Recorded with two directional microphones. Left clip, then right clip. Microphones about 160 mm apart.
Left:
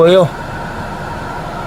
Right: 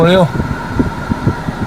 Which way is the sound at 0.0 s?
Centre (ahead or behind).